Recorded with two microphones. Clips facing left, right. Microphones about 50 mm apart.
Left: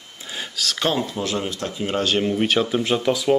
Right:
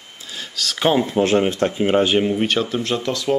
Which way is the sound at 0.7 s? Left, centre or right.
Centre.